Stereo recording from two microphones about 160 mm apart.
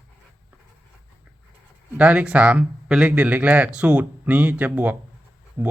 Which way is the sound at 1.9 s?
5° right (ahead or behind).